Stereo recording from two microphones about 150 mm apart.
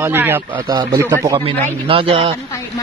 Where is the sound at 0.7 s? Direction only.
25° right (ahead or behind).